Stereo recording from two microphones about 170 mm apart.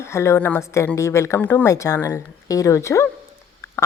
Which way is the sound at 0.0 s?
15° left (ahead or behind).